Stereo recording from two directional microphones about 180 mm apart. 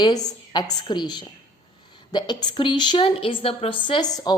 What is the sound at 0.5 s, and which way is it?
A woman's voice, 25° left (ahead or behind).